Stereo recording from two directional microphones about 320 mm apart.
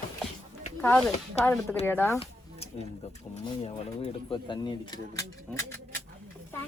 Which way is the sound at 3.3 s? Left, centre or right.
Centre.